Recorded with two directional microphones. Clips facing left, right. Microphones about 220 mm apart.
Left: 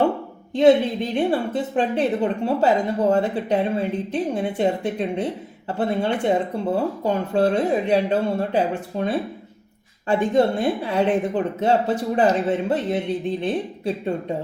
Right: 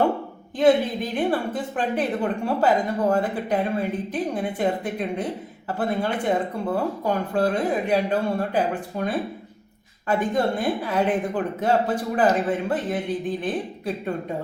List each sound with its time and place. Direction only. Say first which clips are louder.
0.5 s a woman's voice: left 3 dB; 25° left (ahead or behind)